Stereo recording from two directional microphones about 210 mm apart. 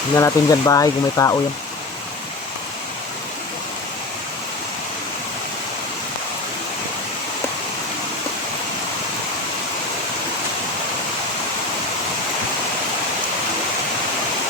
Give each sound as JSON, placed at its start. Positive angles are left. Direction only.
{"t": 0.2, "sound": "speech", "side_deg": 15}